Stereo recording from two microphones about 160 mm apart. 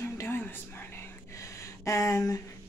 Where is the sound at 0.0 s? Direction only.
15° left (ahead or behind).